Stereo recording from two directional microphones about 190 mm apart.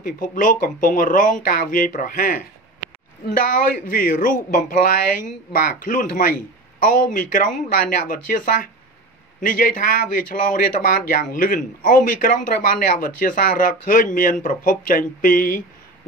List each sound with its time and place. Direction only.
0.0 s speech: 45° left (ahead or behind)